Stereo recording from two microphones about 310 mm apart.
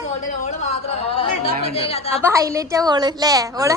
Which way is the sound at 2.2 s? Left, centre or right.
Centre.